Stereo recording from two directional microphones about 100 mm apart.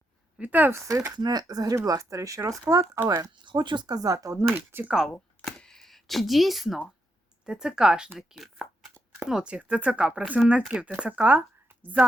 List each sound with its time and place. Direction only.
0.3 s speech: 15° right (ahead or behind)
0.8 s speech: 30° right (ahead or behind)
3.1 s speech: 50° right (ahead or behind)
4.4 s speech: 20° right (ahead or behind)
5.4 s camera: 5° left (ahead or behind)
7.4 s speech: 5° right (ahead or behind)